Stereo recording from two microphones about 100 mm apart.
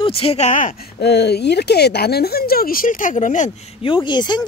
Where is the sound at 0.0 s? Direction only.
70° left (ahead or behind).